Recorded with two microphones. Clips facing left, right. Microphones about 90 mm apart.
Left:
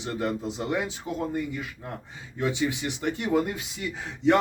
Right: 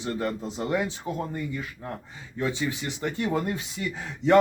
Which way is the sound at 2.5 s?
20° left (ahead or behind).